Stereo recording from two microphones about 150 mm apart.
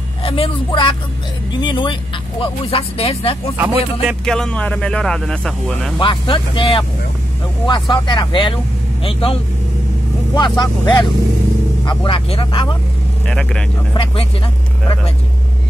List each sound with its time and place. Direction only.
0.2 s speech: 40° left (ahead or behind)
3.5 s speech: 10° right (ahead or behind)
4.3 s speech: 5° left (ahead or behind)
5.9 s speech: 35° left (ahead or behind)
13.3 s speech: 5° left (ahead or behind)